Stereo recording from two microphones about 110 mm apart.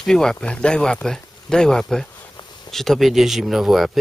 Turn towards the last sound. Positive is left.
turn(degrees=-5)  # may be behind; listen again after turning